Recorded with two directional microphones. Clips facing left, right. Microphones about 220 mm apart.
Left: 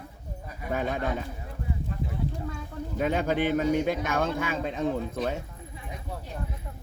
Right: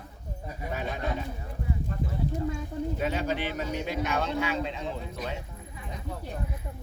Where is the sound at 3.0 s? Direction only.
50° left (ahead or behind).